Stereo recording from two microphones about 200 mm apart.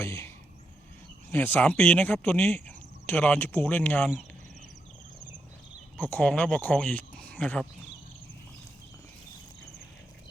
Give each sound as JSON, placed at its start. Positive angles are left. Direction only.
{"t": 0.0, "sound": "speech", "side_deg": 15}
{"t": 1.3, "sound": "speech", "side_deg": 10}
{"t": 6.0, "sound": "speech", "side_deg": 10}